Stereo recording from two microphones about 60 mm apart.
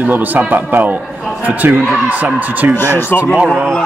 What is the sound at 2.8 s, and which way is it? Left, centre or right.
Speech, left.